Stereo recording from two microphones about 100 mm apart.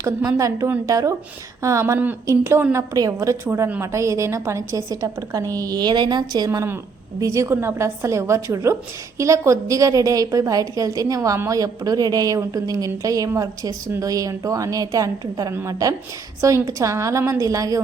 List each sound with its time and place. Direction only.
0.0 s a woman's voice: 35° right (ahead or behind)